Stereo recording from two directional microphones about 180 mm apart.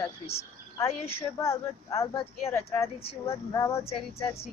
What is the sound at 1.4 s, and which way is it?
Speech, 15° left (ahead or behind).